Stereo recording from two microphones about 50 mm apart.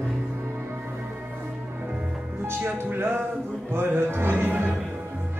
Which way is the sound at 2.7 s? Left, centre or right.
Right.